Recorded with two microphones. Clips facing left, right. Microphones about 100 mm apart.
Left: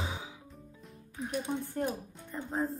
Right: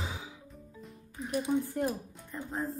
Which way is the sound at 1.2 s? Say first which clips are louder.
Right 4 dB; 5° right (ahead or behind).